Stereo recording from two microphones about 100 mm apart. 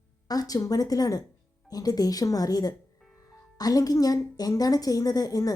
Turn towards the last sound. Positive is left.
turn(degrees=40)  # may be behind; listen again after turning